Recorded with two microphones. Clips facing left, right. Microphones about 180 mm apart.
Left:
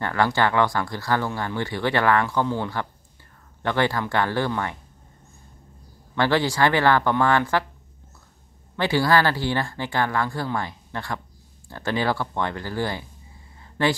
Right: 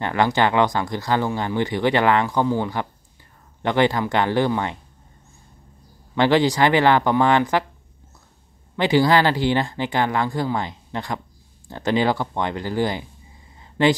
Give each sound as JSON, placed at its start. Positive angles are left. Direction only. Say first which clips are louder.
{"t": 0.0, "sound": "speech", "louder": "right 2 dB", "side_deg": -20}
{"t": 6.1, "sound": "speech", "louder": "right 4 dB", "side_deg": -20}
{"t": 8.7, "sound": "speech", "louder": "right 3 dB", "side_deg": -20}
{"t": 13.6, "sound": "a sound", "louder": "right 5 dB", "side_deg": -20}